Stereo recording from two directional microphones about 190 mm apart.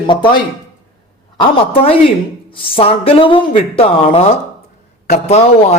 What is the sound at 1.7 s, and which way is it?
A woman's voice, 30° left (ahead or behind).